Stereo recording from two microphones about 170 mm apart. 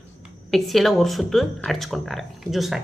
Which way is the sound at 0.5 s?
Centre (ahead or behind).